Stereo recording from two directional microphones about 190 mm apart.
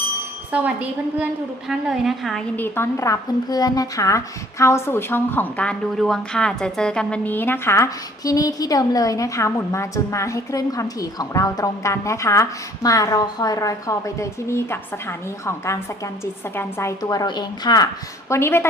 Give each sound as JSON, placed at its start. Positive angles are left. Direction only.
{"t": 0.5, "sound": "a woman's voice", "side_deg": -10}
{"t": 2.6, "sound": "a woman's voice", "side_deg": 10}